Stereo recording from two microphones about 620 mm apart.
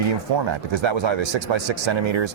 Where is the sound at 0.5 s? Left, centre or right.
Right.